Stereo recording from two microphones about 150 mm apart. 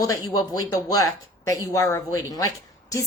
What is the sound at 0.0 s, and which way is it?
Speech, 25° left (ahead or behind).